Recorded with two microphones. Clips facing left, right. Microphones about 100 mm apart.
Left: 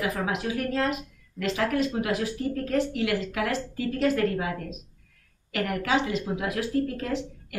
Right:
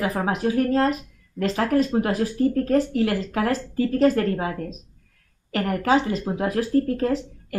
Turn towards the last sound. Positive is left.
turn(degrees=-40)  # may be behind; listen again after turning